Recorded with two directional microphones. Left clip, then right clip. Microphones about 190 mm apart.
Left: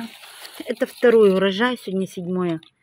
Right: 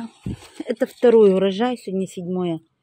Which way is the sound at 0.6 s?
20° right (ahead or behind).